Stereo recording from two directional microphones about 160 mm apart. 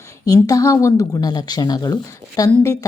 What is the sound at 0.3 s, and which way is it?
Speech, 20° left (ahead or behind).